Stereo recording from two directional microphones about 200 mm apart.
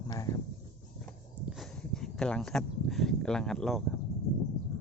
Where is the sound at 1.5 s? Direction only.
Centre (ahead or behind).